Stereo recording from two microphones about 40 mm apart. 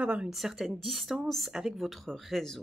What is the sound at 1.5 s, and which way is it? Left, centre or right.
Speech, centre.